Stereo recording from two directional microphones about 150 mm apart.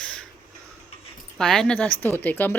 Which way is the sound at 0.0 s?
5° left (ahead or behind).